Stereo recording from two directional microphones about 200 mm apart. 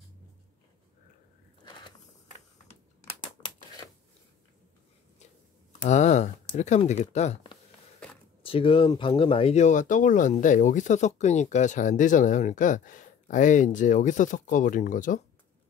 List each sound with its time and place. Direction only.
5.8 s speech: 35° left (ahead or behind)